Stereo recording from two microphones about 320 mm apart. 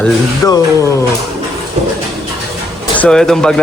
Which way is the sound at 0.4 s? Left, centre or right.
Centre.